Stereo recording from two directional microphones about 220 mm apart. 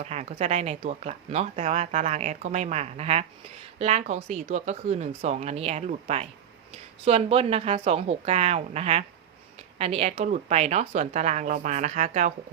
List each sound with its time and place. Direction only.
0.0 s a woman's voice: 30° right (ahead or behind)